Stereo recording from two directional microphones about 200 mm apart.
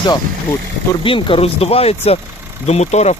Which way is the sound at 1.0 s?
25° left (ahead or behind).